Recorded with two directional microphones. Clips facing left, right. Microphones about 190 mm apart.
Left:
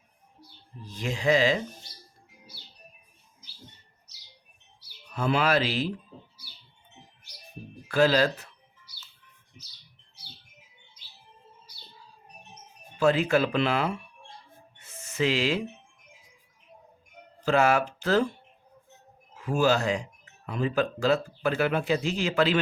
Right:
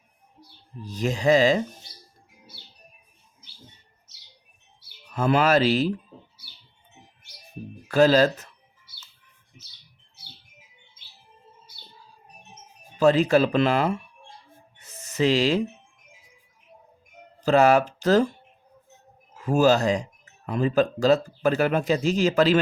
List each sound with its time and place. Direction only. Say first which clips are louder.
0.9 s speech: right 5 dB; 40° right (ahead or behind)
5.1 s speech: right 4 dB; 45° right (ahead or behind)
7.9 s speech: right 5 dB; 40° right (ahead or behind)
13.0 s speech: right 4 dB; 40° right (ahead or behind)
14.8 s music: right 4 dB; 40° right (ahead or behind)
17.4 s speech: right 5 dB; 40° right (ahead or behind)
19.5 s speech: right 5 dB; 40° right (ahead or behind)